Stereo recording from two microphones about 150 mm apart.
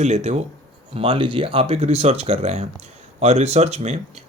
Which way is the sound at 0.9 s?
35° right (ahead or behind).